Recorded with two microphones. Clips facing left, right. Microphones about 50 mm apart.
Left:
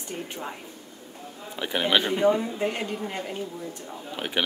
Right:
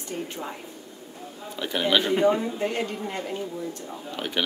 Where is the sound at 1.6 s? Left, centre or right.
Centre.